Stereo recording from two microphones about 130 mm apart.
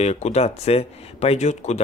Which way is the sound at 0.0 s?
55° left (ahead or behind).